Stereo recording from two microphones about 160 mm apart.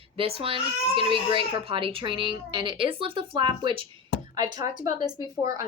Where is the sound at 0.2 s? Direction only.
35° right (ahead or behind).